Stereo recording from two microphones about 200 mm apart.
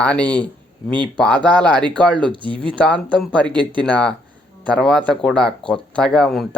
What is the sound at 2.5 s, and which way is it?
Speech, 5° left (ahead or behind).